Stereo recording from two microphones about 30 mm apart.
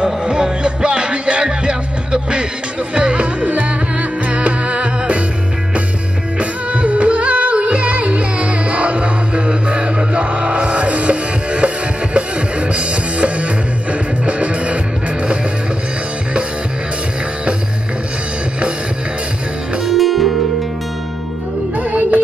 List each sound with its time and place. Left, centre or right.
0.0 s music: right
3.4 s music: right
4.3 s music: right
6.7 s music: right
19.9 s music: centre
21.7 s music: right